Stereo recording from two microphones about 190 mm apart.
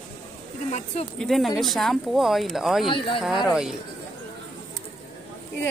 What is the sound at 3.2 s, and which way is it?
Speech, centre (ahead or behind).